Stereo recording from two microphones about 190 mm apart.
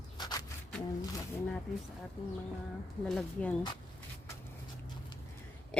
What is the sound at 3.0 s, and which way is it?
Speech, 5° left (ahead or behind).